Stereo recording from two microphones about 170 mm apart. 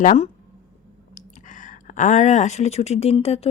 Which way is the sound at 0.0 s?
50° left (ahead or behind).